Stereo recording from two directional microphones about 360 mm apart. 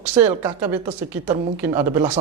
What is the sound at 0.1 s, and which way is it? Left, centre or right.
A woman's voice, centre.